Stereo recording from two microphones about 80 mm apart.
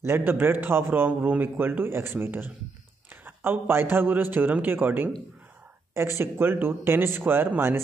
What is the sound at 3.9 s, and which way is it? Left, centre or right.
Speech, right.